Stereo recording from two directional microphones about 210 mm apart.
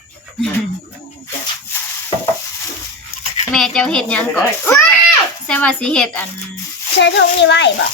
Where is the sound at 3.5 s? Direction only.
Centre (ahead or behind).